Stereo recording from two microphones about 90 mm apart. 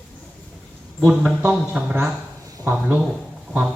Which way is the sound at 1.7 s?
20° right (ahead or behind).